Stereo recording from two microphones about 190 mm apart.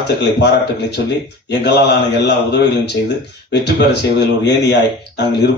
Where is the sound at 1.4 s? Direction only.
60° left (ahead or behind).